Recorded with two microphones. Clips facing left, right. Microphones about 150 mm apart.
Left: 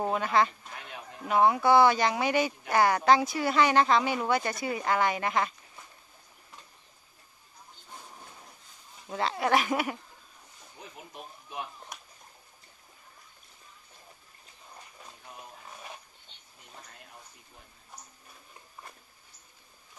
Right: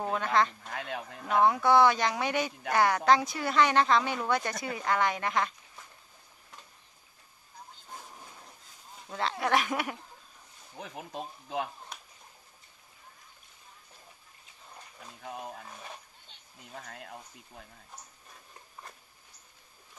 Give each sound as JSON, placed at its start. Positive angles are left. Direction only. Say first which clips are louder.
{"t": 0.1, "sound": "speech", "louder": "right 1 dB", "side_deg": 5}
{"t": 0.7, "sound": "speech", "louder": "right 7 dB", "side_deg": -70}
{"t": 1.2, "sound": "speech", "louder": "left 2 dB", "side_deg": 5}
{"t": 9.1, "sound": "speech", "louder": "left 2 dB", "side_deg": 5}
{"t": 10.8, "sound": "speech", "louder": "right 6 dB", "side_deg": -80}
{"t": 16.8, "sound": "a sound", "louder": "right 7 dB", "side_deg": -70}